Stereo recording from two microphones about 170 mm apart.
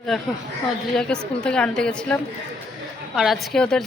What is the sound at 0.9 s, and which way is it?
A woman's voice, 5° left (ahead or behind).